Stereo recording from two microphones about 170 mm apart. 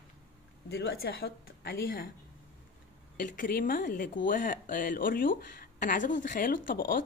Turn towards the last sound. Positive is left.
turn(degrees=55)  # may be behind; listen again after turning